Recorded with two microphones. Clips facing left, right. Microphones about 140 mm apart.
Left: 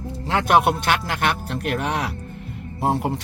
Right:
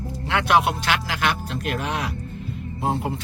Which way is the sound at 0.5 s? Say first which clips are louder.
Left 3 dB; 55° left (ahead or behind).